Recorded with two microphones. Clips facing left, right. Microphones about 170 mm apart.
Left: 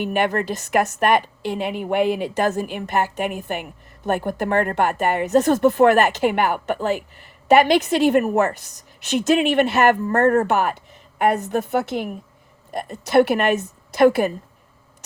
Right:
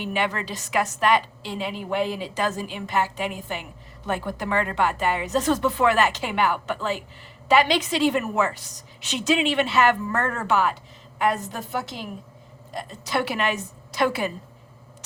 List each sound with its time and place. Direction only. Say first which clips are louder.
0.0 s a woman's voice: left 6 dB; 50° left (ahead or behind)